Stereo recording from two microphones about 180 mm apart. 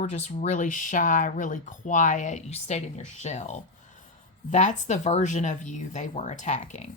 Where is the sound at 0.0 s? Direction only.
35° left (ahead or behind).